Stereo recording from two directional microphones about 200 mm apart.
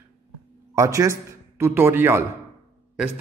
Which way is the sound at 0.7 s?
15° right (ahead or behind).